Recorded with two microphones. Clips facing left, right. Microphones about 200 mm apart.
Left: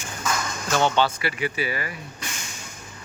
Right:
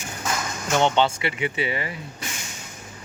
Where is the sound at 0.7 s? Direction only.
20° right (ahead or behind).